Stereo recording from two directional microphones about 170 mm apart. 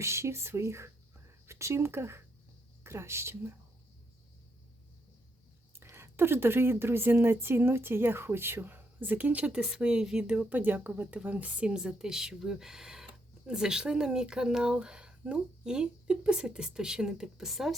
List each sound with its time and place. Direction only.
0.0 s a woman's voice: 15° right (ahead or behind)
5.8 s a woman's voice: 15° right (ahead or behind)